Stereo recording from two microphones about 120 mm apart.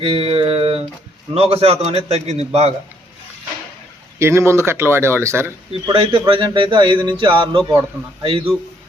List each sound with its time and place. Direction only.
0.0 s a man's voice: 50° right (ahead or behind)
4.2 s speech: 20° right (ahead or behind)
5.9 s speech: 45° right (ahead or behind)